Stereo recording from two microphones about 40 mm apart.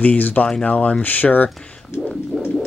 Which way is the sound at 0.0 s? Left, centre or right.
Left.